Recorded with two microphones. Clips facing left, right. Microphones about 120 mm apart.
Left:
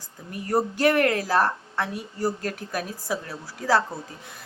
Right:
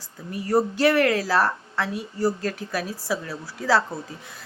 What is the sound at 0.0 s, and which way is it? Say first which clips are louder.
Speech: right 3 dB; 45° left (ahead or behind).